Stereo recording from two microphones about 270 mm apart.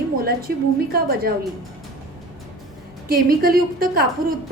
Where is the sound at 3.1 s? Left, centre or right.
Right.